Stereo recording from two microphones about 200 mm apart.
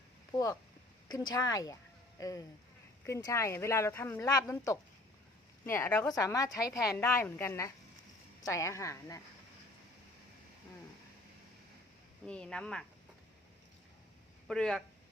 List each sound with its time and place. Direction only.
0.3 s speech: 15° left (ahead or behind)
12.2 s speech: 5° left (ahead or behind)
14.4 s speech: centre (ahead or behind)